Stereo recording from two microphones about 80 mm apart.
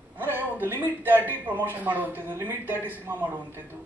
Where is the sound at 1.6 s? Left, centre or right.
Right.